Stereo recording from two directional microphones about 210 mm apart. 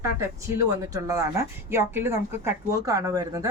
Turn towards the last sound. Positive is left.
turn(degrees=-15)  # may be behind; listen again after turning